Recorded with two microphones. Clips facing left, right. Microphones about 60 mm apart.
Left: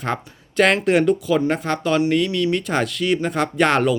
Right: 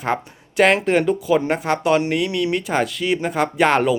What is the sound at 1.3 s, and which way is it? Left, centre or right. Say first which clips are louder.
Speech: right 1 dB; centre.